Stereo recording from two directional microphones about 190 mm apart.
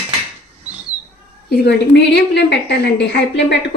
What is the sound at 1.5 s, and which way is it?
A woman's voice, 65° left (ahead or behind).